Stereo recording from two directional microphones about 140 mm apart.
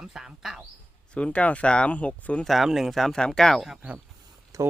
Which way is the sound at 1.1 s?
10° left (ahead or behind).